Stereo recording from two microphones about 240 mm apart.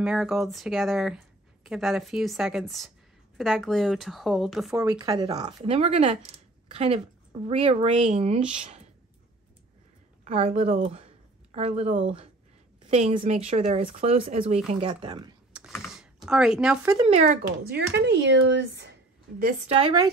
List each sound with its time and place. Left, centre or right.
0.0 s speech: centre
4.7 s speech: centre
10.2 s speech: right
15.5 s typing: centre
15.9 s speech: centre
16.9 s speech: right